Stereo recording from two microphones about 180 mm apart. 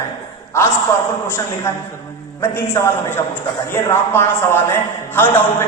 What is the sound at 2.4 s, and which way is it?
A man's voice, 15° left (ahead or behind).